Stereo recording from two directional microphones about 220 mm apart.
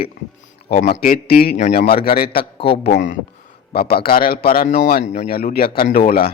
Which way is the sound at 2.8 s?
50° left (ahead or behind).